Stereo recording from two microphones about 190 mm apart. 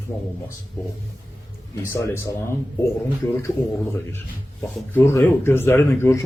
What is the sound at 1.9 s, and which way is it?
Speech, 15° left (ahead or behind).